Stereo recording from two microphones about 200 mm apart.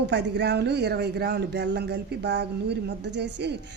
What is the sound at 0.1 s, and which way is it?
Speech, 60° right (ahead or behind).